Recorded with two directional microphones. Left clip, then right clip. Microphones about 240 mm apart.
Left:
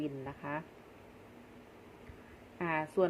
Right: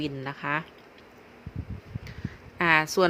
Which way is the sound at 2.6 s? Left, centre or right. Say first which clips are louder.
Right 11 dB; right.